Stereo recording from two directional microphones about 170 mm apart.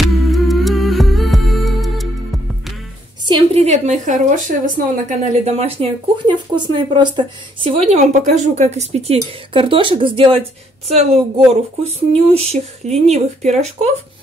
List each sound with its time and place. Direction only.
0.0 s music: centre (ahead or behind)
3.3 s a woman's voice: 35° right (ahead or behind)